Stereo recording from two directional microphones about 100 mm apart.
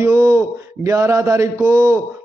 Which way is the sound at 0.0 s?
30° right (ahead or behind).